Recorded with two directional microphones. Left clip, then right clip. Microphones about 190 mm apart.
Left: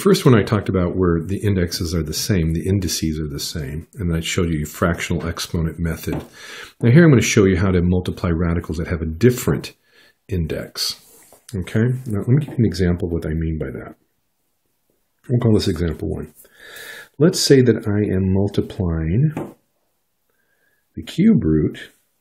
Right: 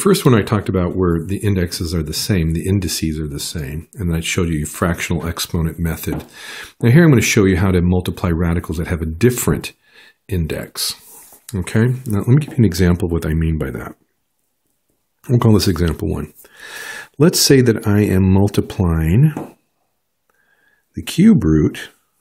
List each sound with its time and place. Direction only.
0.0 s speech: 20° right (ahead or behind); by 13.9 s 40° right (ahead or behind)
15.2 s speech: 40° right (ahead or behind)
20.9 s speech: 40° right (ahead or behind)